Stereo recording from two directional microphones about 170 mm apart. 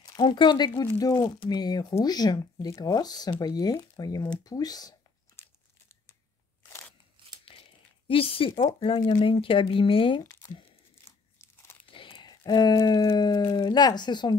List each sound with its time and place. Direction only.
0.0 s speech: 25° left (ahead or behind)
7.5 s crumpling: 30° left (ahead or behind)
8.1 s speech: 30° left (ahead or behind)
11.4 s crunch: 15° left (ahead or behind)
11.9 s speech: 30° left (ahead or behind)